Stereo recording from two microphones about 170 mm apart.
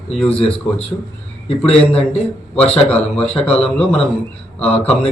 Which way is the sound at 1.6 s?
35° left (ahead or behind).